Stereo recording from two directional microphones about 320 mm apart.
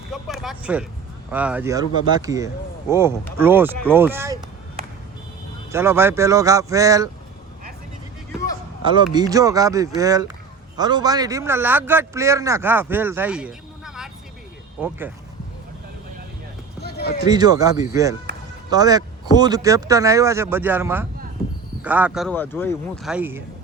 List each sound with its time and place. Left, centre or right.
0.1 s a sound: centre
1.3 s a man's voice: centre
5.7 s a man's voice: centre
8.8 s a man's voice: centre
16.8 s run: left
17.2 s a man's voice: centre
23.1 s a man's voice: centre